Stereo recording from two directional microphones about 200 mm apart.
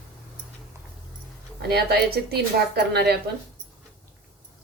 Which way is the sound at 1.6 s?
55° right (ahead or behind).